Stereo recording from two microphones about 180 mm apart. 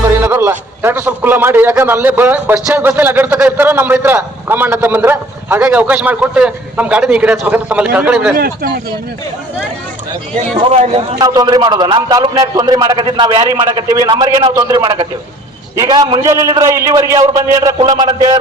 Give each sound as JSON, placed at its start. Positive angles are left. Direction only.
{"t": 0.2, "sound": "a man's voice", "side_deg": -10}
{"t": 10.6, "sound": "speech", "side_deg": -35}
{"t": 11.2, "sound": "a man's voice", "side_deg": -20}